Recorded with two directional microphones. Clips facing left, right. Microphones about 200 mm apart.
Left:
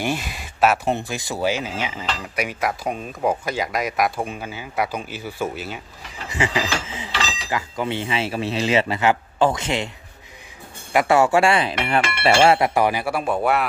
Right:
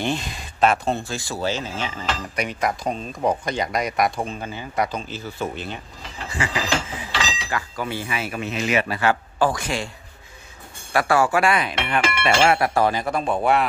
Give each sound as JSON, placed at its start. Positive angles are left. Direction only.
{"t": 0.0, "sound": "speech", "side_deg": 10}
{"t": 6.2, "sound": "speech", "side_deg": 20}
{"t": 10.9, "sound": "speech", "side_deg": 20}